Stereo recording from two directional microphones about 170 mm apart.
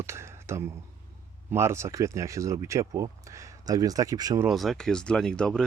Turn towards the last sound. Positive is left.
turn(degrees=5)  # may be behind; listen again after turning